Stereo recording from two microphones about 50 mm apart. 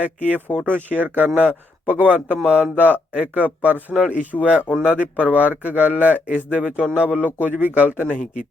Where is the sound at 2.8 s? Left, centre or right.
Right.